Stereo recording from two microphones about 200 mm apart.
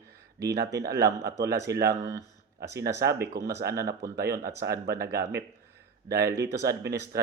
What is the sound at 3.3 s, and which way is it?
Speech, 50° right (ahead or behind).